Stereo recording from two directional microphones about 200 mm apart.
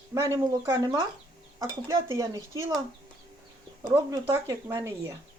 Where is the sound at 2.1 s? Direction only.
15° right (ahead or behind).